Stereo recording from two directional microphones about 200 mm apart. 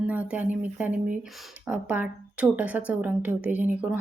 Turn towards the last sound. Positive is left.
turn(degrees=-5)  # may be behind; listen again after turning